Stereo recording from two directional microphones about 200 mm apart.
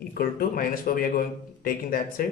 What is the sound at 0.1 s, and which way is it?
Speech, 45° left (ahead or behind).